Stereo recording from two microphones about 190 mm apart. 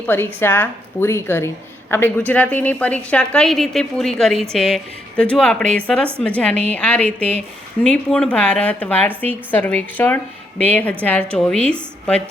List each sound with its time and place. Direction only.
0.0 s a woman's voice: 10° left (ahead or behind)